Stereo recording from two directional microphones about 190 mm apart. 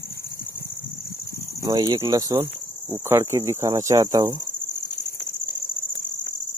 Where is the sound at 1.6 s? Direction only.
20° right (ahead or behind).